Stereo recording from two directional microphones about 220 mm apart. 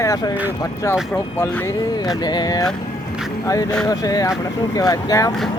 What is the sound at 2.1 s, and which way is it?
Speech, 20° left (ahead or behind).